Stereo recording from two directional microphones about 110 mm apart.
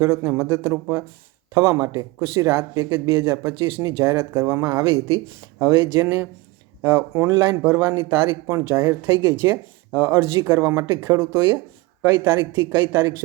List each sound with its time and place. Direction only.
0.0 s speech: 20° right (ahead or behind)